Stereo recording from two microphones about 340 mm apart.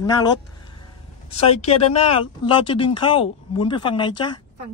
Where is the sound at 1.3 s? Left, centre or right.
Centre.